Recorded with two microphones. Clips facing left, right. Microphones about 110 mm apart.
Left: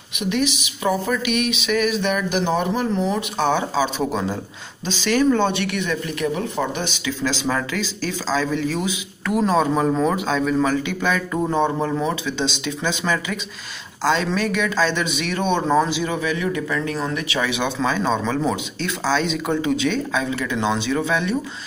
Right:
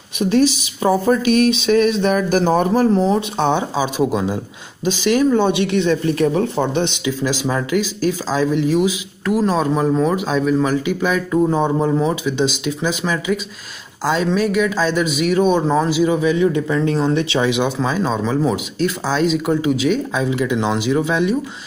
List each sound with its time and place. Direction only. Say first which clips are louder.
0.2 s speech: right 7 dB; 35° right (ahead or behind)
7.1 s speech: right 3 dB; 10° right (ahead or behind)
16.2 s speech: right 7 dB; 25° right (ahead or behind)
17.6 s speech: right 2 dB; 10° right (ahead or behind)